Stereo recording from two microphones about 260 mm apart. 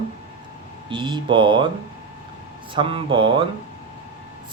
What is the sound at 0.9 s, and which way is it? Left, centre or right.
Speech, centre.